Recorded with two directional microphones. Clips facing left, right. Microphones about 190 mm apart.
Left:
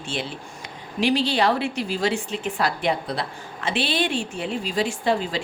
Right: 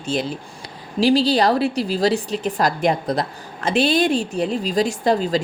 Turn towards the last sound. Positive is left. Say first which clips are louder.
# right 5 dB
turn(degrees=-40)  # may be behind; listen again after turning